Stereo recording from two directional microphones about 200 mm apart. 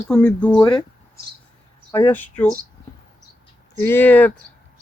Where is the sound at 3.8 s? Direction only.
10° left (ahead or behind).